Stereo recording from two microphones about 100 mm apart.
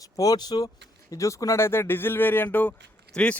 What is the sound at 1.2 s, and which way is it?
Speech, 30° left (ahead or behind).